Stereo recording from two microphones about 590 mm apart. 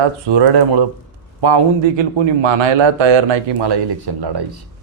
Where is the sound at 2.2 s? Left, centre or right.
Right.